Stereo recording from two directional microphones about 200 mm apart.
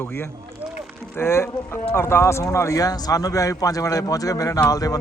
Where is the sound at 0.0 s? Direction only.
10° left (ahead or behind).